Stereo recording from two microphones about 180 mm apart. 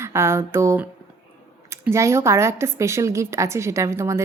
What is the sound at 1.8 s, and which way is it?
A woman's voice, 15° right (ahead or behind).